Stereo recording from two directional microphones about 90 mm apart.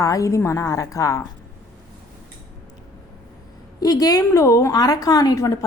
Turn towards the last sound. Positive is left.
turn(degrees=40)  # may be behind; listen again after turning